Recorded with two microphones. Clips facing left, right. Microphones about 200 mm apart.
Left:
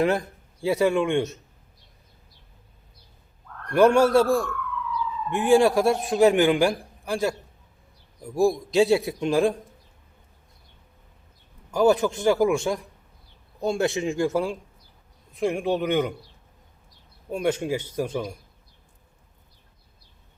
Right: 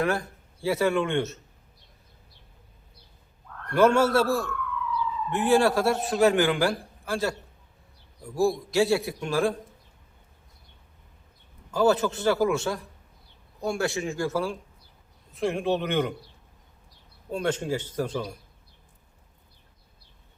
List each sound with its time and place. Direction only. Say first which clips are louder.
0.0 s speech: left 4 dB; 20° left (ahead or behind)
3.7 s a man's voice: left 3 dB; 15° left (ahead or behind)
8.4 s a man's voice: left 3 dB; 20° left (ahead or behind)
11.7 s a man's voice: left 3 dB; 15° left (ahead or behind)
17.3 s a man's voice: left 2 dB; 10° left (ahead or behind)